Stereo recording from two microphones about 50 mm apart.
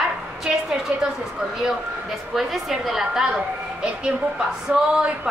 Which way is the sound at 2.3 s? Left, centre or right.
Centre.